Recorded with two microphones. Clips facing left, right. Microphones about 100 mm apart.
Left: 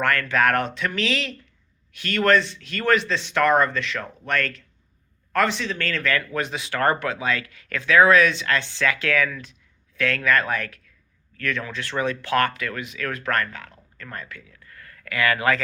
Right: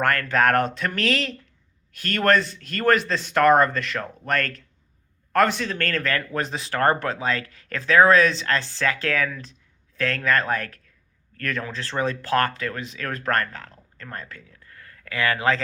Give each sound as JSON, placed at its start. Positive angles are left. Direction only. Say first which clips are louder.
{"t": 0.0, "sound": "speech", "louder": "right 1 dB", "side_deg": -40}